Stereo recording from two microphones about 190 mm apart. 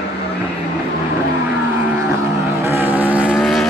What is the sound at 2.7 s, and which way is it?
Vehicle, 10° right (ahead or behind).